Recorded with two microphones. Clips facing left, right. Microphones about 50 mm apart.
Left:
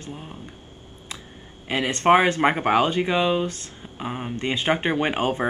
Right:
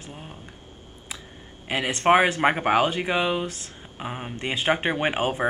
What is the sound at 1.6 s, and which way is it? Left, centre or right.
Speech, centre.